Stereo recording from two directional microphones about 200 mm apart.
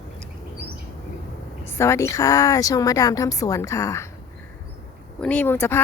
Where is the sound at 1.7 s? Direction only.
15° left (ahead or behind).